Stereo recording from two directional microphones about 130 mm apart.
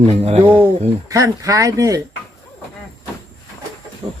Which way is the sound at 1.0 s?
25° right (ahead or behind).